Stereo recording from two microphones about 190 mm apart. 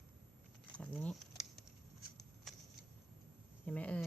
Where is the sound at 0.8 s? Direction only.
5° left (ahead or behind).